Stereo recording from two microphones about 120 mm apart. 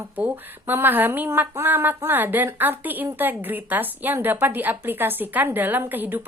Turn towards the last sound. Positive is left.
turn(degrees=-15)  # may be behind; listen again after turning